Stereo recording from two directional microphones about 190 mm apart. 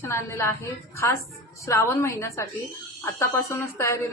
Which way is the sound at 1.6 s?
15° left (ahead or behind).